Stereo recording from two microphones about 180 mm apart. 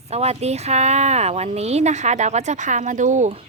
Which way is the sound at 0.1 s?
35° right (ahead or behind).